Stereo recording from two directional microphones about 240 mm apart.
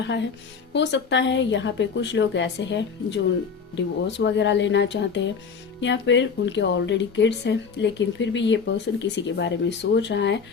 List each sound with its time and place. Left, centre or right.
0.7 s speech: left